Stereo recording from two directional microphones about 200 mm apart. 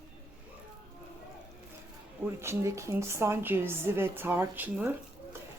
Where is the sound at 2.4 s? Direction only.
15° right (ahead or behind).